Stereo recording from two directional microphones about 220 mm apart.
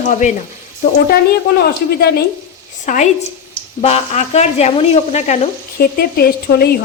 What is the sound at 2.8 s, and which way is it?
Speech, 35° left (ahead or behind).